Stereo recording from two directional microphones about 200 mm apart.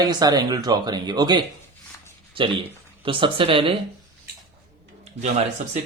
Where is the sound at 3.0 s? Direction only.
25° right (ahead or behind).